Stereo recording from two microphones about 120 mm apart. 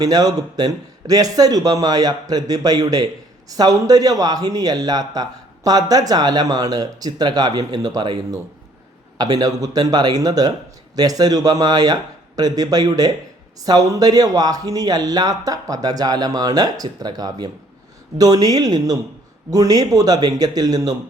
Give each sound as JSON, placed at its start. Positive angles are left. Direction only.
{"t": 0.0, "sound": "speech", "side_deg": -30}